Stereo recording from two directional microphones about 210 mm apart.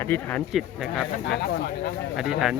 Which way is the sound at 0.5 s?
Centre (ahead or behind).